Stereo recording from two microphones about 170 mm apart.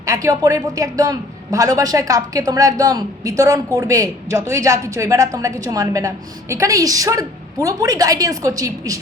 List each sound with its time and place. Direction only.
0.0 s a man's voice: 20° right (ahead or behind)